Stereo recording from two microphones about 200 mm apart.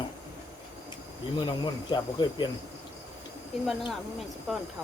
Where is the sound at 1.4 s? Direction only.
20° left (ahead or behind).